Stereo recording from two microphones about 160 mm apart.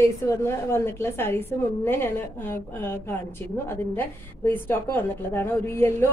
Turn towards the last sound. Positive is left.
turn(degrees=15)  # may be behind; listen again after turning